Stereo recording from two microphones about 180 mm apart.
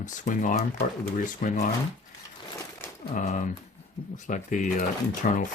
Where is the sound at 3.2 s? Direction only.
45° left (ahead or behind).